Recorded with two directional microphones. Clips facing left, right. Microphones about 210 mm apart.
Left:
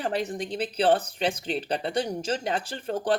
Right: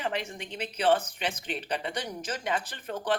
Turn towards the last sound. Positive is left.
turn(degrees=30)  # may be behind; listen again after turning